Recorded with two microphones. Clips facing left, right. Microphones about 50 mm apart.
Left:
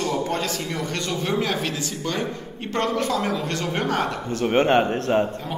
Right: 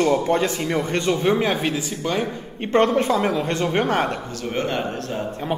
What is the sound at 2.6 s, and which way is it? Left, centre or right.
A man's voice, right.